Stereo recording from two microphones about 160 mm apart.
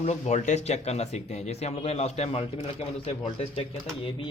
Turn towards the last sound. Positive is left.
turn(degrees=40)  # may be behind; listen again after turning